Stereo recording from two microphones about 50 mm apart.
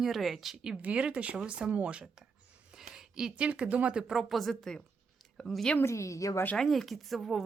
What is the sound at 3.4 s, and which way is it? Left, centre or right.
Speech, right.